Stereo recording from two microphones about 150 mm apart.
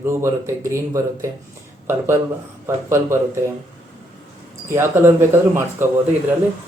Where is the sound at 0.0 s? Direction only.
20° right (ahead or behind).